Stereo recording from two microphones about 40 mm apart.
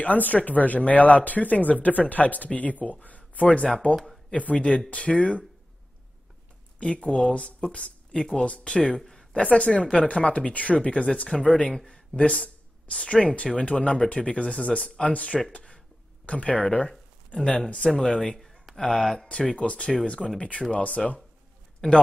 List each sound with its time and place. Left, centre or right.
0.0 s speech: left
6.8 s speech: left
8.9 s a sound: centre
9.4 s speech: left
11.7 s a man's voice: centre
12.2 s speech: left
15.5 s a sound: left
16.3 s speech: left; by 19.2 s centre
19.6 s speech: left
21.8 s speech: centre